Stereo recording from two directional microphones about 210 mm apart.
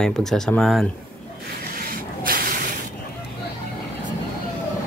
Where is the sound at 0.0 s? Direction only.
Centre (ahead or behind).